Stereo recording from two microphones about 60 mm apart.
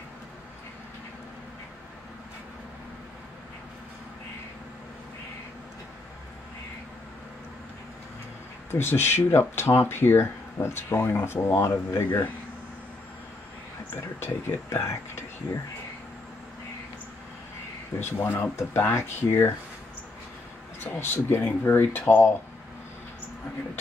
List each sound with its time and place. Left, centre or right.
8.7 s speech: left
14.2 s speech: left
17.9 s speech: left
20.8 s speech: left